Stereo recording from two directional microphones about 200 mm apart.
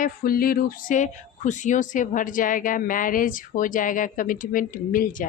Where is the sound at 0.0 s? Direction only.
45° left (ahead or behind).